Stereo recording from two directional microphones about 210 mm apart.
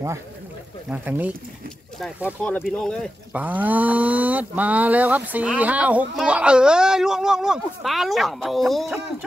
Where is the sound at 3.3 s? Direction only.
10° right (ahead or behind).